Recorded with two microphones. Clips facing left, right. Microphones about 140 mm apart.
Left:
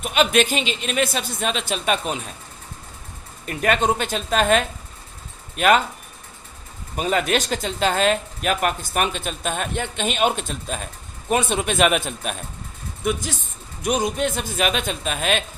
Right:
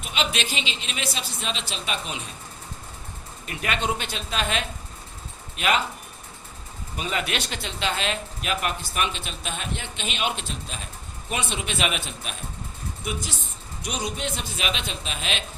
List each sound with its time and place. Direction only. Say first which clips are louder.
0.0 s speech: left 9 dB; 50° left (ahead or behind)
3.4 s speech: left 7 dB; 45° left (ahead or behind)
6.9 s speech: left 8 dB; 45° left (ahead or behind)
13.8 s speech: left 9 dB; 50° left (ahead or behind)